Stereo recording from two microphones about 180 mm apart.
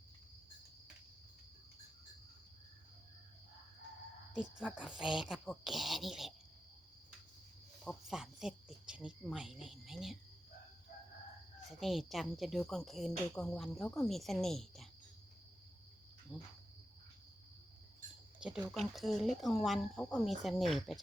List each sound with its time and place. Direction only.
4.4 s a woman's voice: 5° right (ahead or behind)
7.9 s a woman's voice: 5° right (ahead or behind)
11.7 s a woman's voice: centre (ahead or behind)
16.3 s cricket: 15° left (ahead or behind)
18.3 s a woman's voice: 5° right (ahead or behind)